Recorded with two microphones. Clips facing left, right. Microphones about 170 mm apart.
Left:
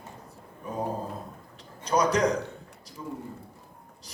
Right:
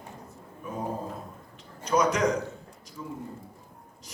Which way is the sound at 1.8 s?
35° left (ahead or behind).